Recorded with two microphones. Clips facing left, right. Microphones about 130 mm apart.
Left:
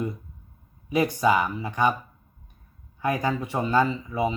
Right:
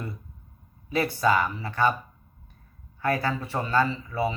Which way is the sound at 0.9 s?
15° left (ahead or behind).